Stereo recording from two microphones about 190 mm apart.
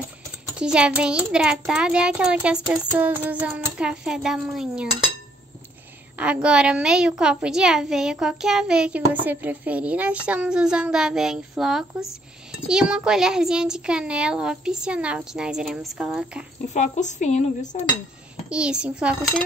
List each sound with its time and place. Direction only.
0.6 s a child's voice: 5° right (ahead or behind)
6.1 s a child's voice: 5° right (ahead or behind)
16.7 s a woman's voice: 40° left (ahead or behind)
18.5 s a child's voice: 5° right (ahead or behind)